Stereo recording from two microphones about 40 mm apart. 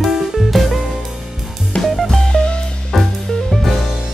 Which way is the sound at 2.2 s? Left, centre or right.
Left.